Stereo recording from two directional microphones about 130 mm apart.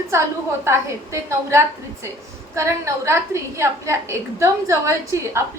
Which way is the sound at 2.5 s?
25° right (ahead or behind).